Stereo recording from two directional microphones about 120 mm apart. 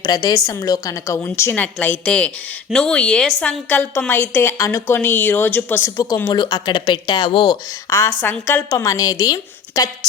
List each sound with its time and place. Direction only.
0.0 s a woman's voice: 35° left (ahead or behind); by 5.9 s 15° left (ahead or behind)
6.2 s speech: 35° left (ahead or behind); by 8.6 s 15° left (ahead or behind)
8.7 s speech: 30° left (ahead or behind)